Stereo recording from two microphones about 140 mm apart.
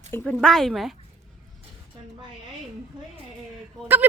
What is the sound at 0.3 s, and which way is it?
Speech, centre (ahead or behind).